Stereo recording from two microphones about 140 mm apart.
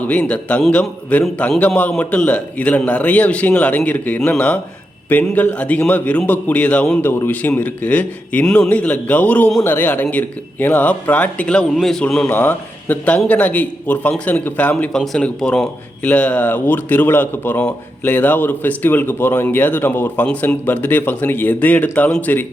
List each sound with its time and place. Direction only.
0.1 s speech: 10° left (ahead or behind)